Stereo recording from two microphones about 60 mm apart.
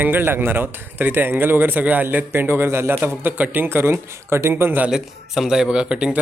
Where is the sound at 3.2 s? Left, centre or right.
Right.